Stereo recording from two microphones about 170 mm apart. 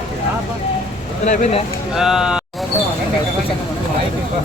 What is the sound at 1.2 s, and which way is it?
Speech, 45° left (ahead or behind).